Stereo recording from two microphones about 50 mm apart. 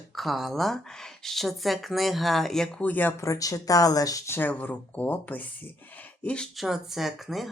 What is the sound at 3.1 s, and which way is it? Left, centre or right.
Speech, left.